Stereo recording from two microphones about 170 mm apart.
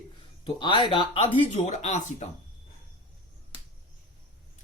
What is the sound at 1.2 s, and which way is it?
Speech, 40° left (ahead or behind).